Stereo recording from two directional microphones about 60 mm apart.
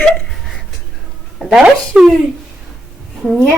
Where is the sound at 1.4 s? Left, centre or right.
Centre.